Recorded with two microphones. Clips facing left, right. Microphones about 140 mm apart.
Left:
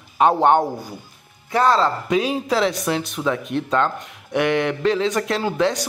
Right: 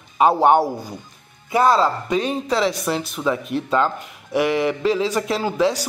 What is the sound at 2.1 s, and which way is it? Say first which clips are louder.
Speech: left 1 dB; 5° left (ahead or behind).